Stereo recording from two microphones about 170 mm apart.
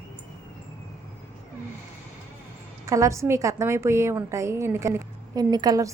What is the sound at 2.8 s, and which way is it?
A woman's voice, 20° right (ahead or behind).